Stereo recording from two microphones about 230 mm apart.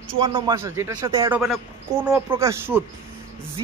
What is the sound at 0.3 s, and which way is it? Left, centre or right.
A woman's voice, centre.